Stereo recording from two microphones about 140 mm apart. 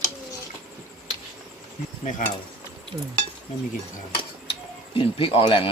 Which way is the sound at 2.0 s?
65° left (ahead or behind).